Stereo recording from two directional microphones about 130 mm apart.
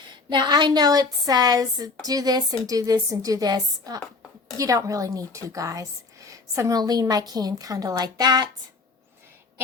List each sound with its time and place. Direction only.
0.3 s a woman's voice: 35° right (ahead or behind)